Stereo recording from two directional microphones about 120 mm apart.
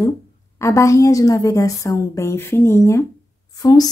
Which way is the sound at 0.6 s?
25° left (ahead or behind).